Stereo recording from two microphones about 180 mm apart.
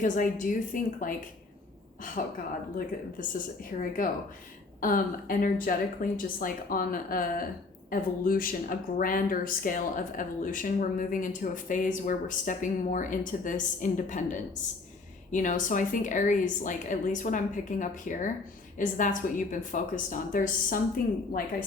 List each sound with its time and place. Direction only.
0.0 s speech: 45° left (ahead or behind)
2.2 s speech: 50° left (ahead or behind)
15.3 s speech: 45° left (ahead or behind)